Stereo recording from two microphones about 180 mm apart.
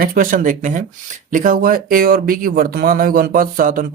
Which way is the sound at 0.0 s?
50° right (ahead or behind).